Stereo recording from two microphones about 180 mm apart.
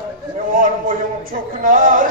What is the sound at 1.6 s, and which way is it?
Speech, 50° right (ahead or behind).